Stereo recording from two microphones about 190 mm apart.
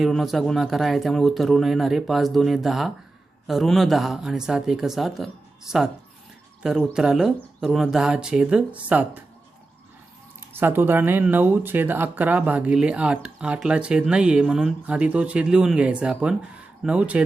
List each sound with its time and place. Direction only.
0.0 s speech: centre (ahead or behind)
10.5 s speech: 10° right (ahead or behind)